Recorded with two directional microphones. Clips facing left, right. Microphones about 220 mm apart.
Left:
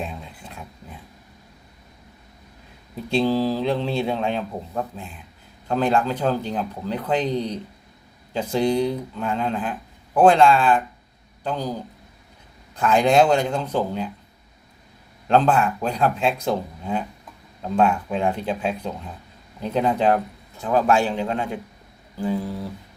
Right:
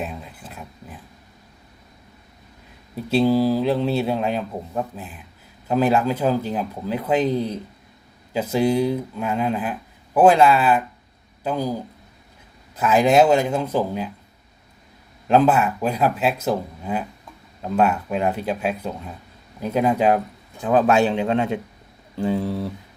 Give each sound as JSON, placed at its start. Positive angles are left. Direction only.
{"t": 0.0, "sound": "a sound", "side_deg": -5}
{"t": 2.9, "sound": "speech", "side_deg": -5}
{"t": 15.3, "sound": "speech", "side_deg": -5}
{"t": 20.6, "sound": "a man's voice", "side_deg": -20}